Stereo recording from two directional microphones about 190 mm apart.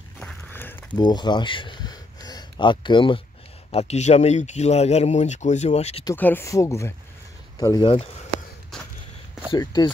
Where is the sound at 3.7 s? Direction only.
35° left (ahead or behind).